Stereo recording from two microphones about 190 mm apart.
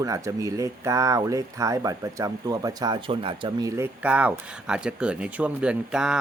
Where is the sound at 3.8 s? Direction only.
5° right (ahead or behind).